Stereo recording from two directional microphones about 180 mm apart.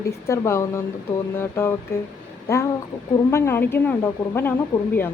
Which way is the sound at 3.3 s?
10° left (ahead or behind).